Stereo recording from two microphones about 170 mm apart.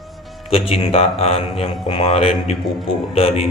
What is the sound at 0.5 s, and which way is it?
A man's voice, 35° left (ahead or behind).